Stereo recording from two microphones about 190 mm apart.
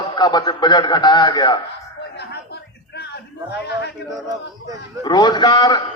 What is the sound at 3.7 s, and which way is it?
Speech, 60° left (ahead or behind).